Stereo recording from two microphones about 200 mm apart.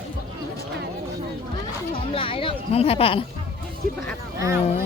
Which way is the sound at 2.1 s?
25° left (ahead or behind).